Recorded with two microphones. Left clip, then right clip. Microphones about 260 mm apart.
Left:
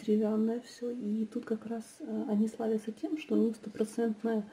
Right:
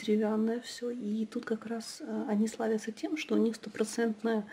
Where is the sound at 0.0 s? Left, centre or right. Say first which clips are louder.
Even; centre.